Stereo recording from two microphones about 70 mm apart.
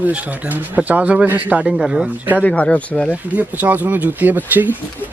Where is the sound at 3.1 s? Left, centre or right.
Right.